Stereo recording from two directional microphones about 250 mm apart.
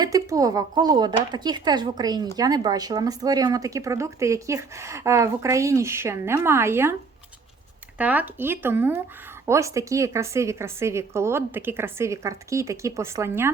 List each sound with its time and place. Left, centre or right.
0.0 s speech: centre
7.9 s speech: centre